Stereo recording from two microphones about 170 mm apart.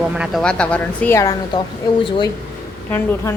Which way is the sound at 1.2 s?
20° left (ahead or behind).